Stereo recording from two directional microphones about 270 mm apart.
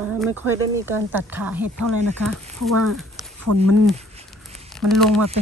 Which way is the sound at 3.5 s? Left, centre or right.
Right.